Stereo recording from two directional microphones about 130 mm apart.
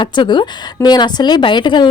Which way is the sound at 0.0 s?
35° left (ahead or behind).